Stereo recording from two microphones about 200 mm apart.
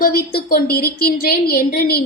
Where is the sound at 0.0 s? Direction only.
50° left (ahead or behind).